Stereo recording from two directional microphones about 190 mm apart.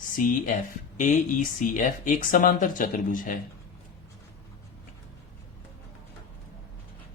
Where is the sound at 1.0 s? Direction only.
45° left (ahead or behind).